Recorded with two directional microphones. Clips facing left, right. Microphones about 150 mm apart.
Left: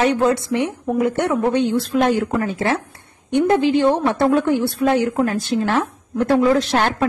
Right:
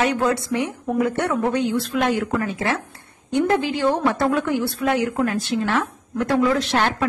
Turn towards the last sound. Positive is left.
turn(degrees=35)  # may be behind; listen again after turning